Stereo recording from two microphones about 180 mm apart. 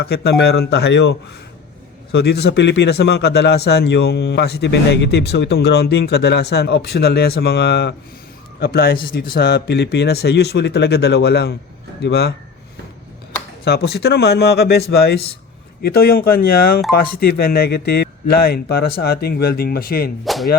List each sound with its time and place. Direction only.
0.0 s speech: 60° left (ahead or behind)
2.1 s speech: 65° left (ahead or behind)
13.7 s speech: 60° left (ahead or behind)
20.2 s whip: centre (ahead or behind)